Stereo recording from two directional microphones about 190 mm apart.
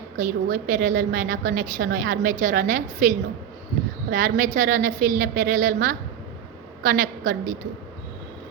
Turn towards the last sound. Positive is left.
turn(degrees=-45)  # may be behind; listen again after turning